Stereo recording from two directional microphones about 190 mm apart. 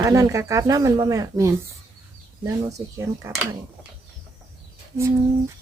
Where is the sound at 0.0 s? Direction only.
15° right (ahead or behind).